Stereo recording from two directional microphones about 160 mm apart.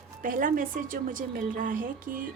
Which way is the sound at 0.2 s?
60° right (ahead or behind).